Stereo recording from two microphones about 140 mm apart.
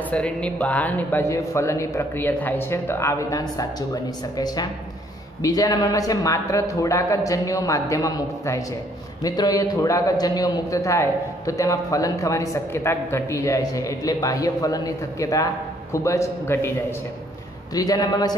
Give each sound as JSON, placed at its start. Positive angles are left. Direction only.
{"t": 0.1, "sound": "a man's voice", "side_deg": 10}
{"t": 17.7, "sound": "a man's voice", "side_deg": 25}